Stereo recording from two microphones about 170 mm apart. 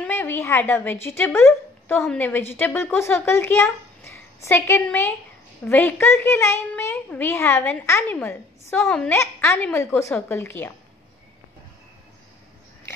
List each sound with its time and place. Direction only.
0.0 s a woman's voice: 10° left (ahead or behind)
4.0 s a sound: 15° left (ahead or behind)
4.8 s a child's voice: 10° left (ahead or behind)
8.8 s a woman's voice: 5° left (ahead or behind)
9.1 s a child's voice: 15° left (ahead or behind)